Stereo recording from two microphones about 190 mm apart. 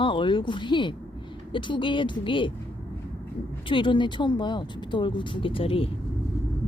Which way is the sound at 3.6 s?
25° left (ahead or behind).